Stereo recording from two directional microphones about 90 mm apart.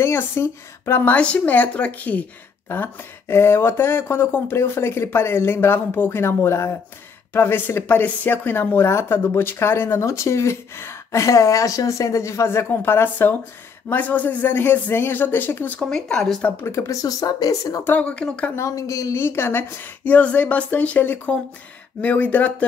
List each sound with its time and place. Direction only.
0.0 s a woman's voice: 30° left (ahead or behind)
15.9 s a woman's voice: 5° left (ahead or behind)
16.6 s speech: 35° left (ahead or behind)
17.8 s a woman's voice: 15° left (ahead or behind)
18.6 s speech: 35° left (ahead or behind)
19.2 s a woman's voice: 25° left (ahead or behind)